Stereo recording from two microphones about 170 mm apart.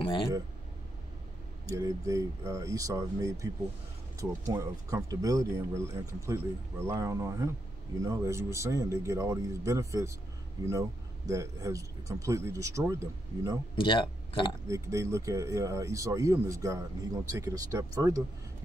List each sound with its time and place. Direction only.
0.0 s speech: 30° left (ahead or behind)
1.7 s speech: 20° right (ahead or behind)
13.7 s speech: 30° left (ahead or behind)
14.7 s speech: 20° right (ahead or behind)